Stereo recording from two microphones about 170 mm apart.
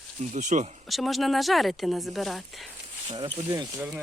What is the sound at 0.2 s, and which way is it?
Speech, 45° right (ahead or behind).